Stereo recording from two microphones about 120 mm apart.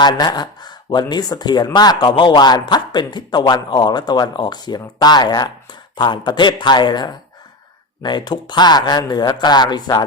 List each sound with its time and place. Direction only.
0.0 s speech: 35° left (ahead or behind)